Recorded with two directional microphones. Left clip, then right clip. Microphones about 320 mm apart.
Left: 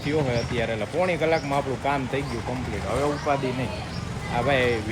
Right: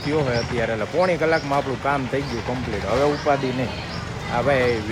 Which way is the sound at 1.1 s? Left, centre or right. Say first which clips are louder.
Right 3 dB; centre.